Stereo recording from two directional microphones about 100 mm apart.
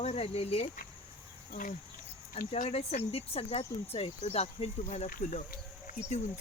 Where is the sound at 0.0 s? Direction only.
90° left.